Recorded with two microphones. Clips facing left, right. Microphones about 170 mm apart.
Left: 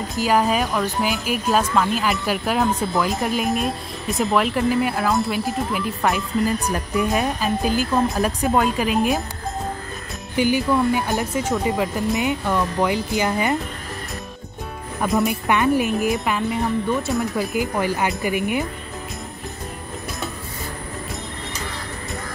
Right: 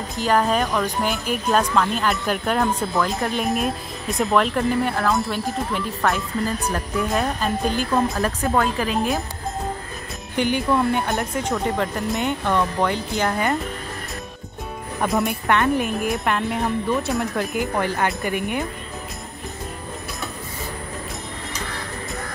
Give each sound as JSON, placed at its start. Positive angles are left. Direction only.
{"t": 0.1, "sound": "speech", "side_deg": 5}
{"t": 8.2, "sound": "speech", "side_deg": 15}
{"t": 10.3, "sound": "speech", "side_deg": 5}
{"t": 15.0, "sound": "speech", "side_deg": 0}